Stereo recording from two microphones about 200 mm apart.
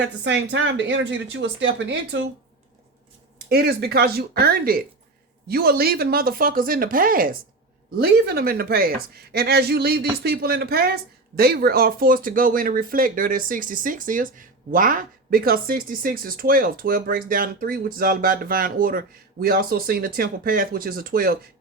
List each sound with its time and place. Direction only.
0.3 s a woman's voice: 60° right (ahead or behind)
3.5 s speech: 50° right (ahead or behind)